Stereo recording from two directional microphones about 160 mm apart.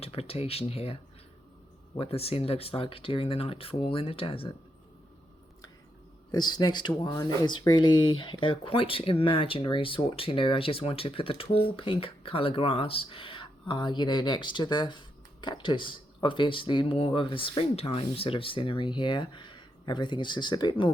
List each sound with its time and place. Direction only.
0.0 s speech: 35° left (ahead or behind)
2.0 s speech: 40° left (ahead or behind)
6.3 s speech: 25° left (ahead or behind)